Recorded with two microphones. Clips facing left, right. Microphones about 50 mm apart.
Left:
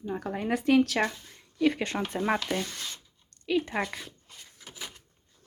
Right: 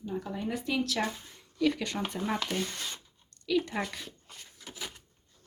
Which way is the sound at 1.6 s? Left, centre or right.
Left.